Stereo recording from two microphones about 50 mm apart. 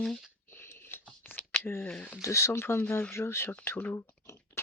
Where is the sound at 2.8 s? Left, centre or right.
Left.